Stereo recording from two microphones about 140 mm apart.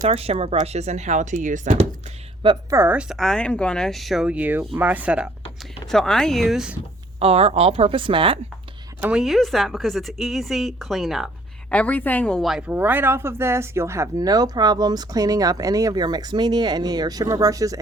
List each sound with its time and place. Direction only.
0.0 s speech: 45° right (ahead or behind)
2.6 s speech: 15° right (ahead or behind)
5.9 s speech: 5° left (ahead or behind)
7.2 s speech: 45° right (ahead or behind)
9.0 s speech: 10° right (ahead or behind)
11.7 s speech: 10° left (ahead or behind); by 17.7 s 25° right (ahead or behind)